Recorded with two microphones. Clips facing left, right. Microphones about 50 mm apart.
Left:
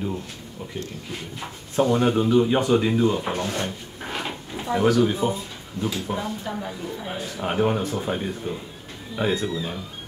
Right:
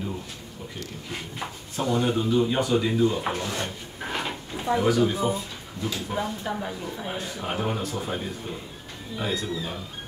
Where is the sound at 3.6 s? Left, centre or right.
Centre.